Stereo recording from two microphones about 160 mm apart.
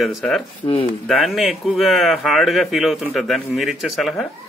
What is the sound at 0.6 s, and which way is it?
Speech, 25° left (ahead or behind).